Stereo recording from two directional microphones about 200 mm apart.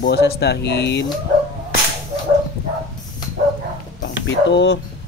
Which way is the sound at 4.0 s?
65° left (ahead or behind).